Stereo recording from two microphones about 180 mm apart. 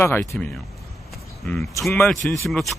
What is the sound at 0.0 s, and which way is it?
Speech, 10° left (ahead or behind).